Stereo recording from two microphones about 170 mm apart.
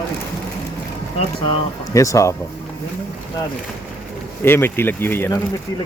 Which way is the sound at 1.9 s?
20° left (ahead or behind).